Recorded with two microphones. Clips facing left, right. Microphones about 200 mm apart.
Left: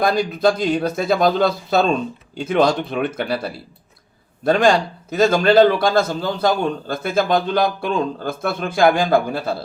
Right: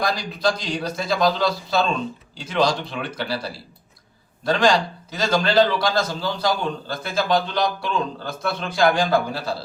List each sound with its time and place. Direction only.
0.0 s a man's voice: 55° left (ahead or behind)
5.1 s a man's voice: 55° left (ahead or behind)